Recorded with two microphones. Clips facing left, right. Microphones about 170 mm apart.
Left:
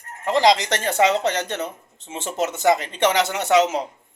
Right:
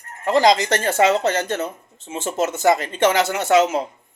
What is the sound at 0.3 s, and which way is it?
Speech, 15° left (ahead or behind).